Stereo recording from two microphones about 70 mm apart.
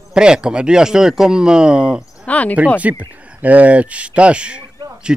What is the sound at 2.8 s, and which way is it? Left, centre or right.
A man's voice, right.